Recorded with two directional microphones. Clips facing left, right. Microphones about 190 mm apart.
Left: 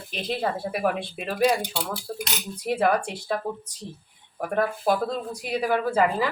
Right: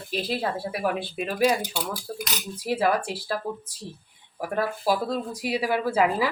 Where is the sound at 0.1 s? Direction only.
5° right (ahead or behind).